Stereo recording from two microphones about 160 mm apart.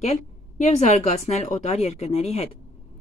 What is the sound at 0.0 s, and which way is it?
Speech, 45° left (ahead or behind).